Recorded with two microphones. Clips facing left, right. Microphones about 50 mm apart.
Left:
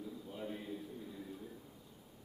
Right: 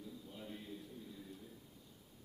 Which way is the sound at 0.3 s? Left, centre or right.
Centre.